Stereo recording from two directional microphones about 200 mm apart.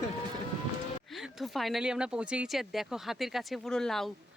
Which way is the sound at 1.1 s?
Centre (ahead or behind).